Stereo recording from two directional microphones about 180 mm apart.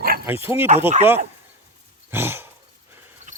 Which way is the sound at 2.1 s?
10° right (ahead or behind).